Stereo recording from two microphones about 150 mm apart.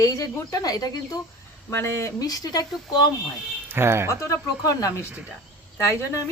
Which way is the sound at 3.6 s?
15° right (ahead or behind).